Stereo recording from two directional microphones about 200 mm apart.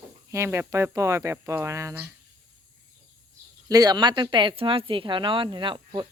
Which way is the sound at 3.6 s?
20° right (ahead or behind).